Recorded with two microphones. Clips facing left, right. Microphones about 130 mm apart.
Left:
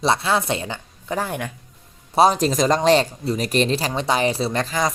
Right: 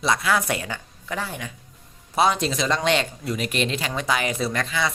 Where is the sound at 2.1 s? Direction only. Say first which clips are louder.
Left 5 dB; 35° left (ahead or behind).